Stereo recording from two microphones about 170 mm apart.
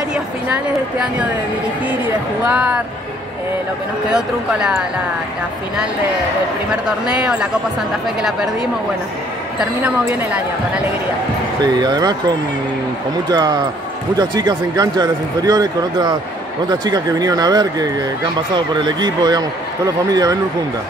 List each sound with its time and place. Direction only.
0.1 s speech: 5° right (ahead or behind)
2.4 s speech: 5° right (ahead or behind)
4.1 s speech: 5° right (ahead or behind)
6.7 s speech: 5° right (ahead or behind)
9.6 s speech: 5° right (ahead or behind)
11.6 s speech: 25° right (ahead or behind)